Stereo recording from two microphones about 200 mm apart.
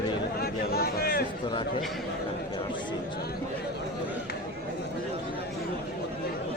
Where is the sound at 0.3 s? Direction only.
50° left (ahead or behind).